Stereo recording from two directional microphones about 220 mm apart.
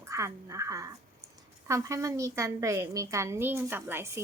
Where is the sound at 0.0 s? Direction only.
15° right (ahead or behind).